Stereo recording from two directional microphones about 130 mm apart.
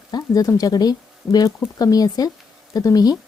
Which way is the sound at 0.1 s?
25° left (ahead or behind).